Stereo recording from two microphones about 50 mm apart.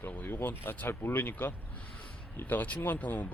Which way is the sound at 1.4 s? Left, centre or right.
Left.